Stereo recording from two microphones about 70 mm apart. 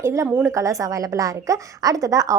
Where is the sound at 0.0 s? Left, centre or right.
Right.